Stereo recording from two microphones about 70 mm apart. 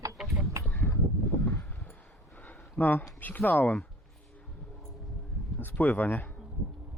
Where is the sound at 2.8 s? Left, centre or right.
Left.